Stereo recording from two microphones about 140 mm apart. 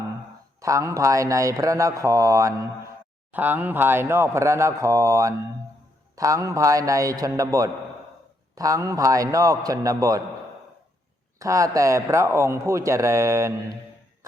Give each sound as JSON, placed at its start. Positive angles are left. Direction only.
{"t": 0.6, "sound": "a man's voice", "side_deg": -20}
{"t": 11.3, "sound": "a man's voice", "side_deg": -20}